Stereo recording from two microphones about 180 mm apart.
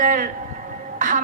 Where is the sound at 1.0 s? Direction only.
45° right (ahead or behind).